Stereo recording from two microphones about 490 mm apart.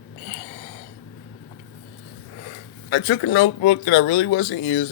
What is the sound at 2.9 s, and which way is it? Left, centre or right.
Speech, left.